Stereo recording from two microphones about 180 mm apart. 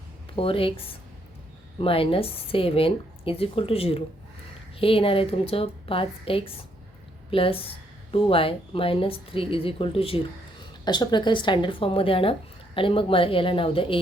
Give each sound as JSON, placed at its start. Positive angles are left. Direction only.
{"t": 0.3, "sound": "a woman's voice", "side_deg": 30}
{"t": 1.8, "sound": "a woman's voice", "side_deg": 30}